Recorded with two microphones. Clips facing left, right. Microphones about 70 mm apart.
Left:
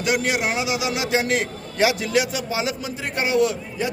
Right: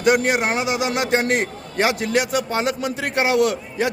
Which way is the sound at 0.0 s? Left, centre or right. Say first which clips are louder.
Right 4 dB; right.